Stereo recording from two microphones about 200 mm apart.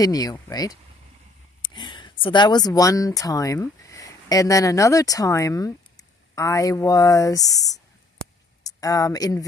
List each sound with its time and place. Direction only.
0.0 s speech: 20° left (ahead or behind)